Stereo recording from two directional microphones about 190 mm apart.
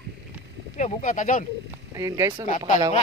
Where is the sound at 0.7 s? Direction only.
40° left (ahead or behind).